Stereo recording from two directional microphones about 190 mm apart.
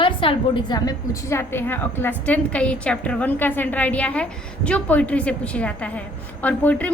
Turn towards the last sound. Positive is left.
turn(degrees=10)  # may be behind; listen again after turning